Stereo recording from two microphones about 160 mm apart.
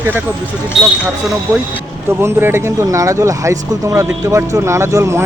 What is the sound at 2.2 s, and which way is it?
Speech, 15° right (ahead or behind).